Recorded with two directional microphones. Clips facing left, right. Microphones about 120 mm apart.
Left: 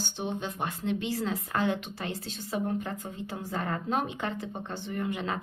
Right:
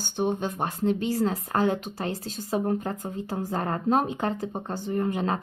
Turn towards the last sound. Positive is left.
turn(degrees=-40)  # may be behind; listen again after turning